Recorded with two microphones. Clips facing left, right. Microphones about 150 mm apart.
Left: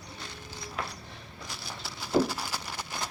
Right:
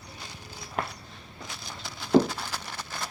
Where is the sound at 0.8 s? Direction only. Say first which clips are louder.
Right 5 dB; 50° right (ahead or behind).